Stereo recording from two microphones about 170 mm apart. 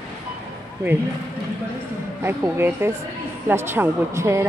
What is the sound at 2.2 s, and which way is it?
Speech, 15° right (ahead or behind).